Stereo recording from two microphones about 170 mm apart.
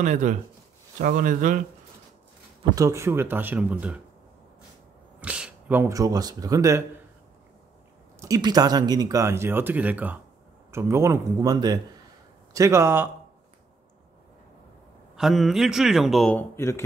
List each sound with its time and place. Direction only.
0.0 s speech: 45° right (ahead or behind)
2.7 s speech: 20° right (ahead or behind)
5.2 s speech: 10° right (ahead or behind)
8.2 s speech: 20° right (ahead or behind)
15.1 s a man's voice: centre (ahead or behind); by 16.8 s 15° left (ahead or behind)